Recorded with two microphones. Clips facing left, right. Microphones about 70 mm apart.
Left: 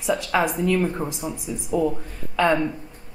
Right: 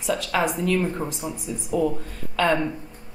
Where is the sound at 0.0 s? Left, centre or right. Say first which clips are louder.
Left 2 dB; centre.